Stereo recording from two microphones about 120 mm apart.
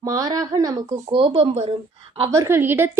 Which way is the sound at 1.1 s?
50° right (ahead or behind).